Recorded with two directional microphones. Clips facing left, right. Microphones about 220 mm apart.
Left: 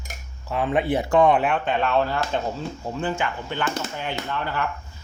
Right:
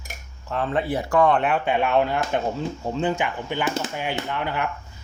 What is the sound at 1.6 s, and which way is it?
Speech, 15° right (ahead or behind).